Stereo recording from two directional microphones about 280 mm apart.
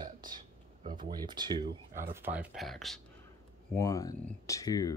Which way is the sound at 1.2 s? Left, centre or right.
Centre.